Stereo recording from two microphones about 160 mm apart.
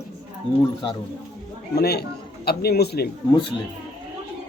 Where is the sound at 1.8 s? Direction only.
85° left.